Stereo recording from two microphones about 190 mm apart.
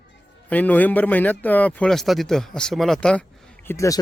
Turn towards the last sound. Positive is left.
turn(degrees=15)  # may be behind; listen again after turning